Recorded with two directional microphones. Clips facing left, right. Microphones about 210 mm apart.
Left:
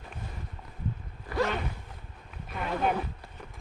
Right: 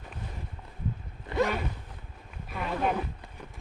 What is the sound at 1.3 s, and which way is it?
Zipper, 20° right (ahead or behind).